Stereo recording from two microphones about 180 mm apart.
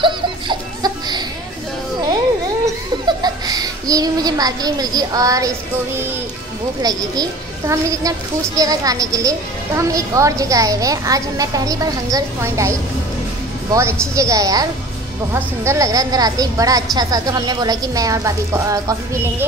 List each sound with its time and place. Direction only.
0.0 s baby laughter: 25° right (ahead or behind)
3.1 s a child's voice: 20° right (ahead or behind)
6.8 s a woman's voice: 20° right (ahead or behind)